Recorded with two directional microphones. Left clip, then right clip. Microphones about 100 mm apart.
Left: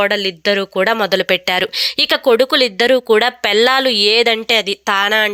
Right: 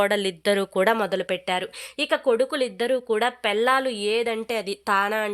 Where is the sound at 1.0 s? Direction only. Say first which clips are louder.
Left 10 dB; 30° left (ahead or behind).